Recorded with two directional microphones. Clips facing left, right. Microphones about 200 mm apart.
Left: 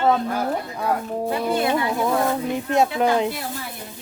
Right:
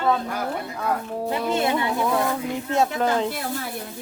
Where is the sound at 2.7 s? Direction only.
15° left (ahead or behind).